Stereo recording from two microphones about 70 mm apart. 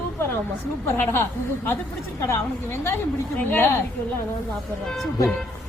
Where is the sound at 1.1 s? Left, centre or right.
Left.